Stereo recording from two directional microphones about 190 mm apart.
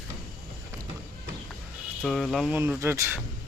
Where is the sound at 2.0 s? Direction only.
Centre (ahead or behind).